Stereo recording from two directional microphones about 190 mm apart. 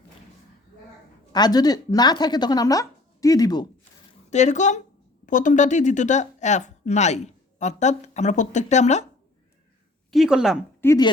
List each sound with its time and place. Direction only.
1.3 s speech: 20° left (ahead or behind)
4.3 s a woman's voice: 40° left (ahead or behind)
10.1 s a woman's voice: centre (ahead or behind)
10.8 s speech: 15° left (ahead or behind)